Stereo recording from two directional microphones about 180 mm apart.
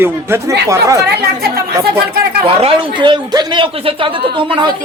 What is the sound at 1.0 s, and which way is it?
Speech, 60° right (ahead or behind).